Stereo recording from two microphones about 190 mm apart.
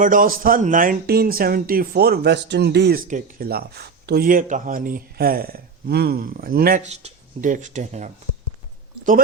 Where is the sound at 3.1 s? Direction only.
45° right (ahead or behind).